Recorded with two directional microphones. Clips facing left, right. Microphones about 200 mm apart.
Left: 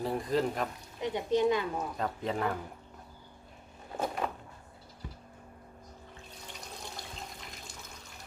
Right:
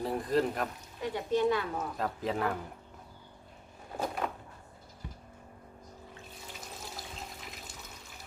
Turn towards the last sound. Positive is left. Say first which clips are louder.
# even
turn(degrees=0)  # may be behind; listen again after turning